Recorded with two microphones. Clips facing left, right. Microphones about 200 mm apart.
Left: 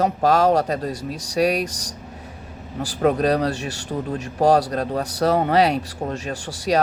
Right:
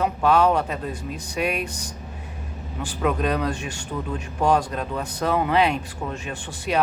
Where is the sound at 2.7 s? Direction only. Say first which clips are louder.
Left 5 dB; 40° left (ahead or behind).